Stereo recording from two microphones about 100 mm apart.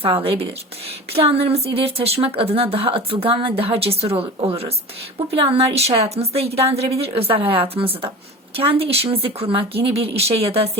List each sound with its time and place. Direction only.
0.0 s a woman's voice: 65° right (ahead or behind)